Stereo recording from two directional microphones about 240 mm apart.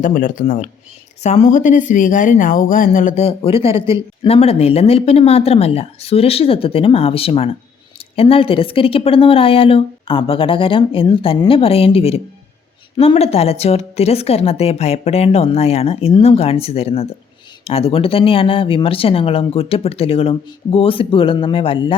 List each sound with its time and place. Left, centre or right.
0.0 s speech: left